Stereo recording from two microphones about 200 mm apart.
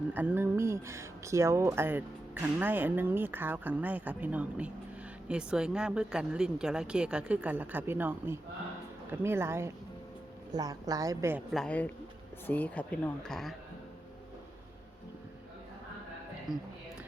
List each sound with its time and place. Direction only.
0.1 s speech: 10° right (ahead or behind)
11.5 s speech: 5° left (ahead or behind)
16.5 s speech: 5° right (ahead or behind)